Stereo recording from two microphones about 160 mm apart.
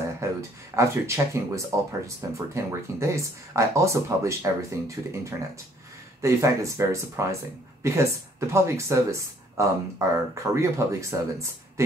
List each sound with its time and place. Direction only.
0.2 s speech: 15° right (ahead or behind)
6.2 s speech: 20° right (ahead or behind)